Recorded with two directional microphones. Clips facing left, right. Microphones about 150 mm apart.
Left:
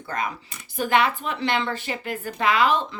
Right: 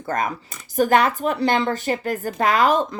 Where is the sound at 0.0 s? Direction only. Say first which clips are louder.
Right 5 dB; 45° right (ahead or behind).